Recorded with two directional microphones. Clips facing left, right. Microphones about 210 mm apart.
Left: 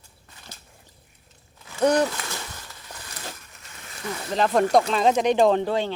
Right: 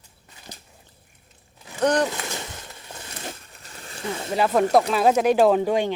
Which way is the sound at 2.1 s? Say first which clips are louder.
Right 3 dB; 20° right (ahead or behind).